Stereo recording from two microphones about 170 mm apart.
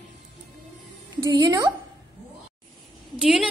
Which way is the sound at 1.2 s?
20° right (ahead or behind).